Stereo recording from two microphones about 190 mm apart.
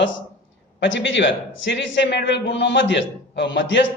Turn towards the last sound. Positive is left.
turn(degrees=75)  # may be behind; listen again after turning